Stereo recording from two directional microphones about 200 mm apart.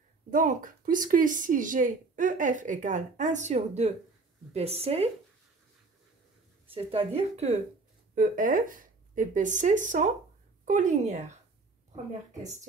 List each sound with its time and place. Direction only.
0.3 s a woman's voice: 40° right (ahead or behind)
6.7 s a woman's voice: 30° right (ahead or behind)